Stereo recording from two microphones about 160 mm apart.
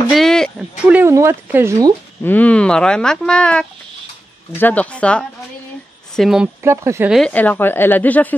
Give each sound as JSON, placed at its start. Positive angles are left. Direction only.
{"t": 0.1, "sound": "a sound", "side_deg": 0}
{"t": 0.8, "sound": "speech", "side_deg": -15}
{"t": 2.2, "sound": "a woman's voice", "side_deg": 10}
{"t": 6.6, "sound": "speech", "side_deg": -15}
{"t": 7.1, "sound": "a woman's voice", "side_deg": 5}